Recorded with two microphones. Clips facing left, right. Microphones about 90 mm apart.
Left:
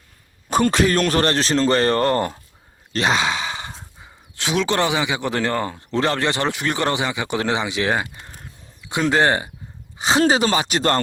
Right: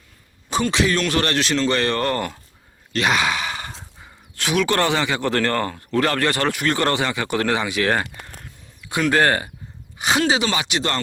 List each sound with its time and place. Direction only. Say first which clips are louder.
0.5 s speech: left 3 dB; 45° left (ahead or behind)
2.9 s sigh: even; 25° left (ahead or behind)
3.7 s horse: even; 5° left (ahead or behind)
4.4 s speech: even; 20° left (ahead or behind)
10.2 s speech: left 3 dB; 40° left (ahead or behind)